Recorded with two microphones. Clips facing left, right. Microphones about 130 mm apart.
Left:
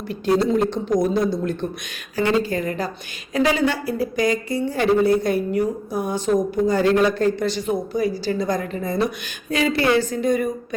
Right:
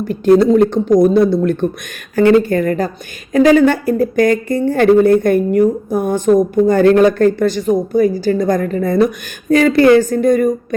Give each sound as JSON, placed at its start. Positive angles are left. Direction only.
{"t": 0.0, "sound": "speech", "side_deg": -50}